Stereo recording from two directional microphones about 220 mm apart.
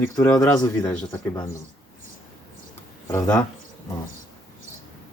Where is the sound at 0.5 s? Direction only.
15° left (ahead or behind).